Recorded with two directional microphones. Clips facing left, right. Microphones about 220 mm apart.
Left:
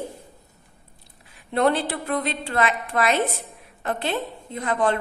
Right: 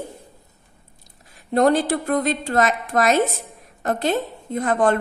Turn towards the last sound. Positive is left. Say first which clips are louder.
# right 4 dB
turn(degrees=-45)  # may be behind; listen again after turning